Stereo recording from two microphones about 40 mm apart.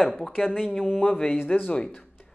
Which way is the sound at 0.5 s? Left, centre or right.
Centre.